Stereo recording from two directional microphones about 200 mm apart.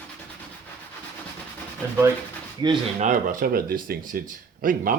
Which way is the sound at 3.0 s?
40° right (ahead or behind).